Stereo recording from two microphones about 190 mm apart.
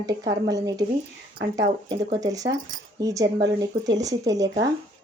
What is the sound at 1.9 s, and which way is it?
Speech, 20° right (ahead or behind).